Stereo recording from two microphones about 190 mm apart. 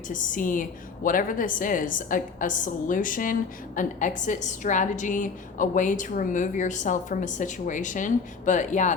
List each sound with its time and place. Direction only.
0.1 s a woman's voice: 45° left (ahead or behind)